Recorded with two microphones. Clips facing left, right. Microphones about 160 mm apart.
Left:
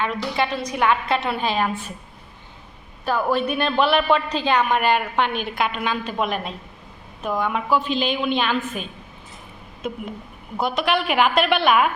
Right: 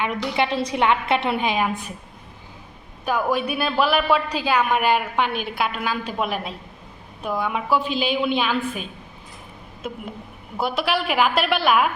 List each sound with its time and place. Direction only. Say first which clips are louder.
0.0 s a woman's voice: even; 20° right (ahead or behind)
3.1 s a woman's voice: left 1 dB; 10° right (ahead or behind)
10.6 s a woman's voice: left 1 dB; 5° right (ahead or behind)